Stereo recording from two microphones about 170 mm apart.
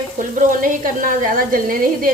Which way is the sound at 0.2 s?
50° right (ahead or behind).